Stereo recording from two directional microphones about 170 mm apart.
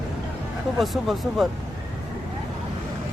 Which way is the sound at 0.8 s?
Centre (ahead or behind).